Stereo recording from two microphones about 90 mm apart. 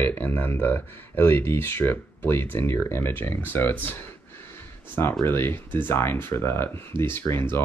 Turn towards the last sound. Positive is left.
turn(degrees=25)  # may be behind; listen again after turning